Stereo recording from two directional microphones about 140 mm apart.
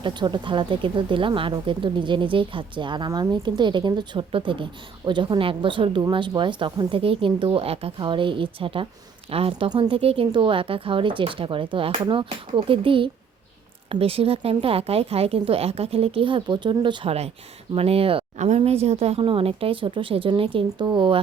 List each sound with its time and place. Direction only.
0.0 s speech: 35° right (ahead or behind)
18.3 s speech: 50° right (ahead or behind); by 21.2 s 35° right (ahead or behind)